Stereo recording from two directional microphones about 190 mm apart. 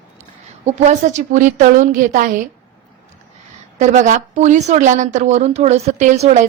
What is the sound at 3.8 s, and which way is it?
A woman's voice, 40° right (ahead or behind).